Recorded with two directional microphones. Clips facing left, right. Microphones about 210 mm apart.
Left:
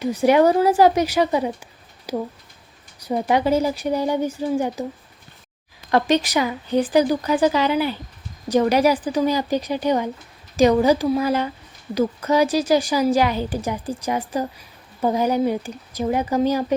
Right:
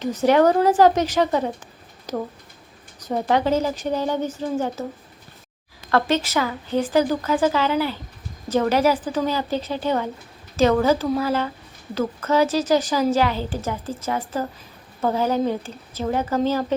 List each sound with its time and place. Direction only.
0.0 s a woman's voice: 10° left (ahead or behind)
5.9 s a woman's voice: 15° left (ahead or behind)